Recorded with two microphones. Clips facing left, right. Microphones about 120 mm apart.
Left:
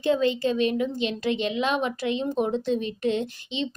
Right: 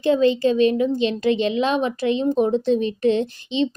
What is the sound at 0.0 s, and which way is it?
A woman's voice, 30° right (ahead or behind).